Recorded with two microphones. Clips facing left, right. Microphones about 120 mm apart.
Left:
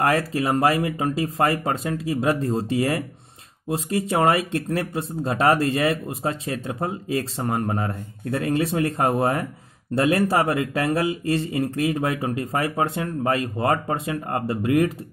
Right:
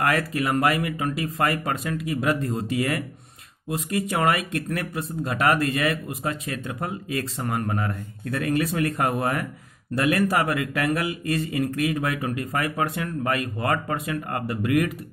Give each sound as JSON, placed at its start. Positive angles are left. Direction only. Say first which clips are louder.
{"t": 0.0, "sound": "speech", "louder": "left 2 dB", "side_deg": 30}